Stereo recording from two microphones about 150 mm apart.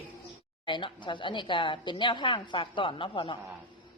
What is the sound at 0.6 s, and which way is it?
Speech, 35° left (ahead or behind).